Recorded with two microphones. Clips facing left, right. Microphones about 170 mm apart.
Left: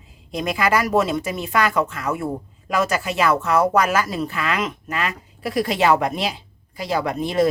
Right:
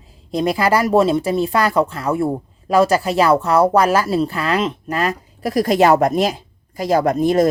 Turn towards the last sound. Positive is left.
turn(degrees=-45)  # may be behind; listen again after turning